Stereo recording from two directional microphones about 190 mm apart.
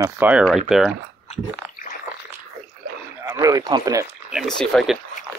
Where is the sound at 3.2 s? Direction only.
15° right (ahead or behind).